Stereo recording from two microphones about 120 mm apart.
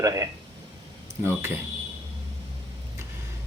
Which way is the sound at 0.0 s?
30° right (ahead or behind).